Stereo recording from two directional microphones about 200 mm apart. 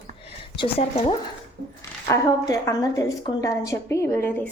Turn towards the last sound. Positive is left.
turn(degrees=10)  # may be behind; listen again after turning